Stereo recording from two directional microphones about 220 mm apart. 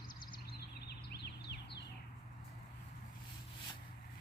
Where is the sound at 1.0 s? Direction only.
50° left (ahead or behind).